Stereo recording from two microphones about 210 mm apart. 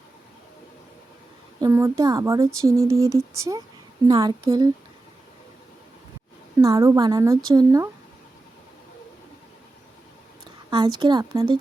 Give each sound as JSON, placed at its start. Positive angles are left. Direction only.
{"t": 1.6, "sound": "a woman's voice", "side_deg": -15}
{"t": 6.6, "sound": "a woman's voice", "side_deg": -15}
{"t": 10.7, "sound": "speech", "side_deg": -20}